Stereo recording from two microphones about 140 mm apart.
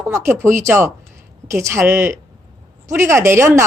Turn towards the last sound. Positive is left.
turn(degrees=-20)  # may be behind; listen again after turning